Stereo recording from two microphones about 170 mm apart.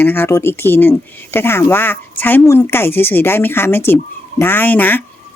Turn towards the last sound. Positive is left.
turn(degrees=10)  # may be behind; listen again after turning